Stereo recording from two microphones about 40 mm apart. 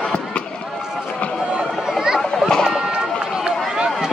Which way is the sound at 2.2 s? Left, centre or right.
Centre.